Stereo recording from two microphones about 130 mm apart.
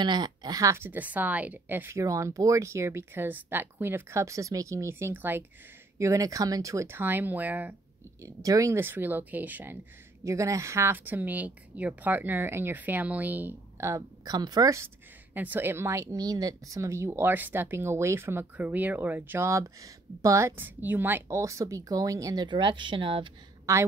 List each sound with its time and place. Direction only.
0.0 s speech: 35° right (ahead or behind); by 7.7 s 15° right (ahead or behind)
8.2 s a woman's voice: 25° right (ahead or behind)
10.2 s a woman's voice: 25° right (ahead or behind)
15.3 s speech: 15° right (ahead or behind); by 23.3 s 40° right (ahead or behind)
23.7 s speech: 25° right (ahead or behind)